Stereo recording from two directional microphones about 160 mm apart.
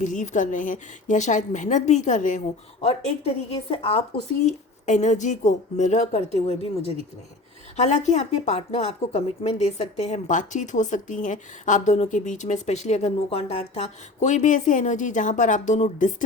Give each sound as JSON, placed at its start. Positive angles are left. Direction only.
{"t": 0.0, "sound": "speech", "side_deg": 50}
{"t": 2.8, "sound": "speech", "side_deg": 35}
{"t": 4.4, "sound": "speech", "side_deg": 50}